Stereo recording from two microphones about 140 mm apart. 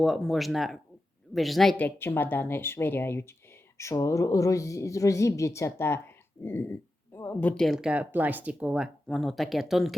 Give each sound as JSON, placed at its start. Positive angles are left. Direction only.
{"t": 0.0, "sound": "speech", "side_deg": 0}
{"t": 1.7, "sound": "a woman's voice", "side_deg": 15}
{"t": 9.0, "sound": "speech", "side_deg": 0}